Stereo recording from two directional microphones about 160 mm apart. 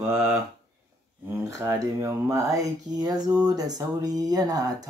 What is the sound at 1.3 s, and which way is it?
A woman's voice, 20° right (ahead or behind).